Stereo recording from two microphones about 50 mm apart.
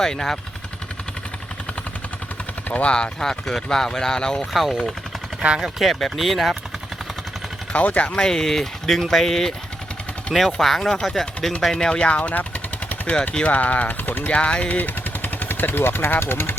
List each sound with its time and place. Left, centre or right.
0.0 s speech: centre
2.6 s speech: left
2.9 s speech: centre
4.5 s speech: centre
7.7 s speech: left
8.1 s speech: centre; by 14.3 s left
14.3 s speech: left
14.8 s vehicle: left